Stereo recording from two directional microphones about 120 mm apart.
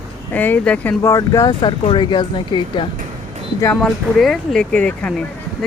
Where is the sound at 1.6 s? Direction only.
45° left (ahead or behind).